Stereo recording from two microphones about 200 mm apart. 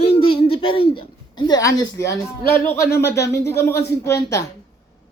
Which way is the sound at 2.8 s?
55° left (ahead or behind).